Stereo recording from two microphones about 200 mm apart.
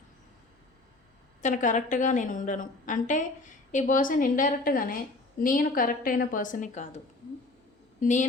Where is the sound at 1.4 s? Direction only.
40° left (ahead or behind).